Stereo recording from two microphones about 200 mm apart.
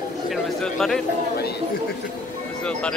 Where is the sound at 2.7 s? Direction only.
5° left (ahead or behind).